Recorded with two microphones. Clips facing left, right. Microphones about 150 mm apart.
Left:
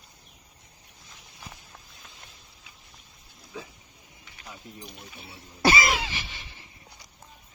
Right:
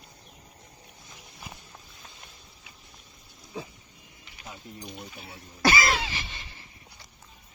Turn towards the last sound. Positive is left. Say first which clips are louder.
# even
turn(degrees=10)  # may be behind; listen again after turning